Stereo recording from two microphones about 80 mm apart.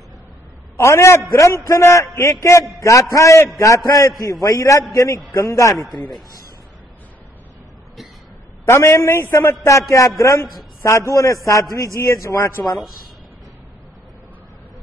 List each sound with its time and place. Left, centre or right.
0.7 s a man's voice: left
8.6 s a man's voice: left